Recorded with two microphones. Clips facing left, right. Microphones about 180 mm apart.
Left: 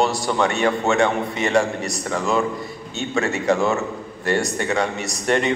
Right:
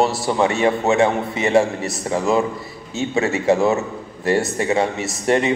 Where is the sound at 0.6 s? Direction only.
20° right (ahead or behind).